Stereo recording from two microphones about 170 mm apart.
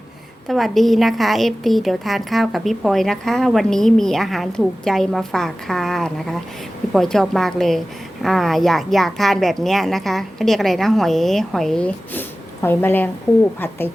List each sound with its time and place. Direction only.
0.4 s a woman's voice: centre (ahead or behind)